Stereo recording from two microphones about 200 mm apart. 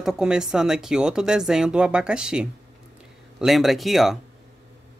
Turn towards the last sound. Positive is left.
turn(degrees=0)  # may be behind; listen again after turning